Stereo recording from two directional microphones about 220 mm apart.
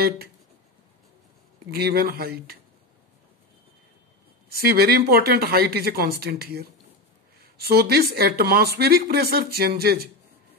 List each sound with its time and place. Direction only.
1.7 s speech: 45° right (ahead or behind)
4.5 s speech: 45° right (ahead or behind)